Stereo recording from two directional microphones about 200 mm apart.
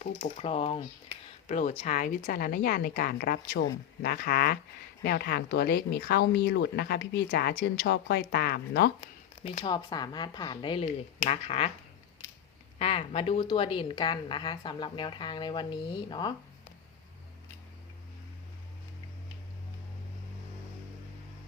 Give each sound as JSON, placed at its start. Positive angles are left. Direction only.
{"t": 0.0, "sound": "a woman's voice", "side_deg": 30}
{"t": 9.0, "sound": "a woman's voice", "side_deg": 30}
{"t": 12.8, "sound": "a woman's voice", "side_deg": 30}